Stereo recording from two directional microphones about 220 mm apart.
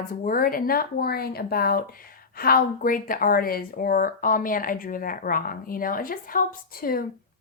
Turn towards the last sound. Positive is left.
turn(degrees=40)  # may be behind; listen again after turning